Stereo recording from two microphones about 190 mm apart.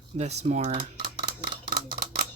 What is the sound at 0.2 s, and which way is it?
Speech, 35° right (ahead or behind).